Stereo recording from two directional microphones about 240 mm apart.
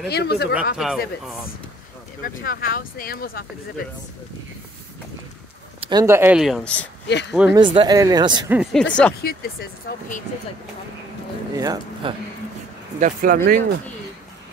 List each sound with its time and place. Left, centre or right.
0.1 s speech: left
0.7 s speech: centre
2.2 s speech: left
5.8 s speech: centre
7.1 s speech: left
7.5 s speech: centre
8.5 s speech: centre
9.2 s speech: left
11.5 s speech: centre
13.0 s speech: right